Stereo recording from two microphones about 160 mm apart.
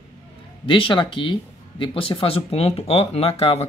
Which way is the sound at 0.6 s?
30° left (ahead or behind).